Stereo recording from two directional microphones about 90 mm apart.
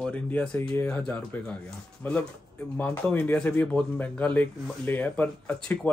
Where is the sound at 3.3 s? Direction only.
15° left (ahead or behind).